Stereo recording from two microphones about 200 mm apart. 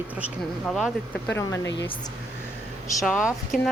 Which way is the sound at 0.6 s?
Centre (ahead or behind).